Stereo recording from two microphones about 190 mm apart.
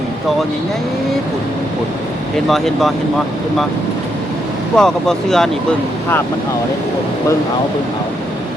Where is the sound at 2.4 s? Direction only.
Centre (ahead or behind).